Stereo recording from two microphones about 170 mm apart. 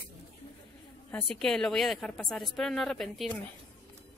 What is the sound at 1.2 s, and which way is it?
A woman's voice, 5° left (ahead or behind).